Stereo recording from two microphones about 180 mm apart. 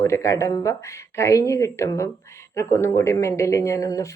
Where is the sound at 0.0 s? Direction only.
15° left (ahead or behind).